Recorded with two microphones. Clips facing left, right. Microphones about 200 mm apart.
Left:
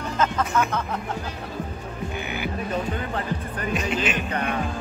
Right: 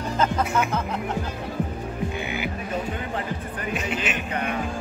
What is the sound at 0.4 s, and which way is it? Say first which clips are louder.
Speech: even; 10° right (ahead or behind).